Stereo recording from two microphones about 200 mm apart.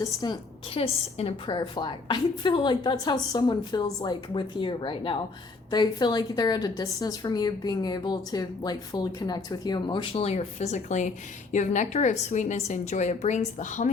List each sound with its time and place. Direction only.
0.0 s a woman's voice: 15° left (ahead or behind)
0.7 s a woman's voice: 30° left (ahead or behind)